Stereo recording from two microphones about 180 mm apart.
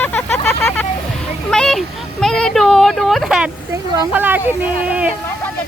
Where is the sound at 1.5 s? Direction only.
Centre (ahead or behind).